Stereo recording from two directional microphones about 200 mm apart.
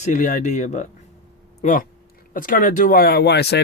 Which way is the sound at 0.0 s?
40° left (ahead or behind).